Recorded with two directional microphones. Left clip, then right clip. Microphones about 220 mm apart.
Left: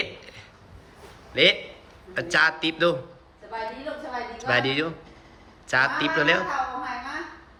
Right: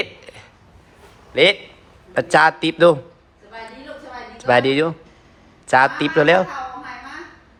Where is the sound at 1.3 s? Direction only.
15° right (ahead or behind).